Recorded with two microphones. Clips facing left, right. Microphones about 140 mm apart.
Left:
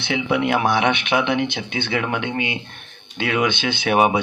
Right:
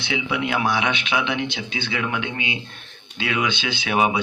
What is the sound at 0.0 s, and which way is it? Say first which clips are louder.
Speech: left 4 dB; 55° left (ahead or behind).